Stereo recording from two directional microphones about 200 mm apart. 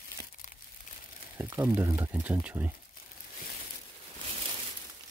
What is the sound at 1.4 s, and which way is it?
Speech, 10° right (ahead or behind).